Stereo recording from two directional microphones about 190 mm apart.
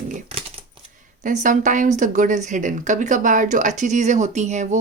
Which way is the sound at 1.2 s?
40° right (ahead or behind).